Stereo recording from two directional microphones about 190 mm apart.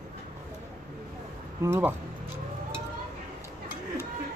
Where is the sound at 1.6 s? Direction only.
10° right (ahead or behind).